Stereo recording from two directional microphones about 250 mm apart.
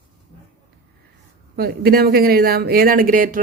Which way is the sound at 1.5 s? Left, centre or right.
Right.